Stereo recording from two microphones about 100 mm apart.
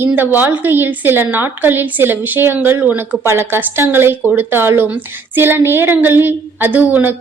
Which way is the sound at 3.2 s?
25° right (ahead or behind).